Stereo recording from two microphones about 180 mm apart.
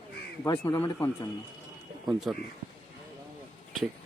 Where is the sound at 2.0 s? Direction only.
Centre (ahead or behind).